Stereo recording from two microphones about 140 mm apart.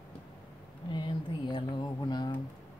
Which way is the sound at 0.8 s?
35° left (ahead or behind).